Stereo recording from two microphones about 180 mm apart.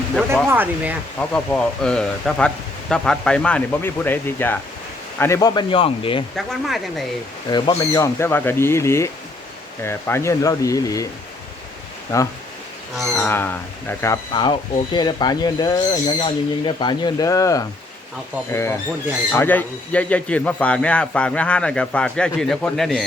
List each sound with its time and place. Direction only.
0.4 s speech: 10° right (ahead or behind)
1.2 s a man's voice: 5° left (ahead or behind)
5.2 s owl: 20° left (ahead or behind)
6.3 s speech: centre (ahead or behind)
7.8 s a man's voice: 15° left (ahead or behind)
12.1 s a man's voice: 15° left (ahead or behind)
13.0 s a man's voice: centre (ahead or behind); by 14.5 s 20° left (ahead or behind)
14.9 s owl: 25° left (ahead or behind)
18.5 s a man's voice: 15° left (ahead or behind)